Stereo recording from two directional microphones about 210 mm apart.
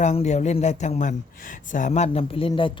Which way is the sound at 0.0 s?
35° left (ahead or behind).